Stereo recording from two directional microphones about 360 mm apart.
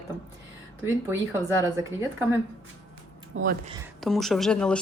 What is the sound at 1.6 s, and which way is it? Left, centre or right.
Speech, centre.